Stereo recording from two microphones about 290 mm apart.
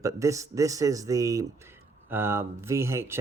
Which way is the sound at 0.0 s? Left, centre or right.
Centre.